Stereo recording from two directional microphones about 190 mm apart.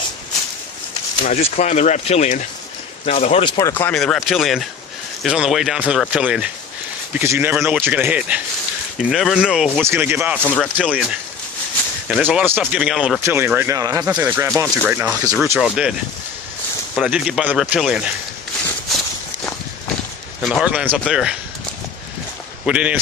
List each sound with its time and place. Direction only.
1.2 s speech: 35° left (ahead or behind)
3.6 s speech: 15° left (ahead or behind); by 10.3 s 10° right (ahead or behind)
10.4 s speech: 10° left (ahead or behind)
10.8 s speech: 5° right (ahead or behind)
20.4 s speech: 5° right (ahead or behind)
22.6 s speech: 5° right (ahead or behind)